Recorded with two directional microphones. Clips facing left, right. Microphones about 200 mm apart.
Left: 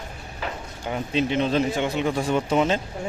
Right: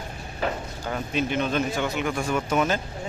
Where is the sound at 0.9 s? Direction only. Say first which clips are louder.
Left 3 dB; 25° left (ahead or behind).